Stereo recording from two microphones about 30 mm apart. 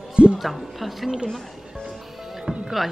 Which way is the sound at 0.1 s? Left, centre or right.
Right.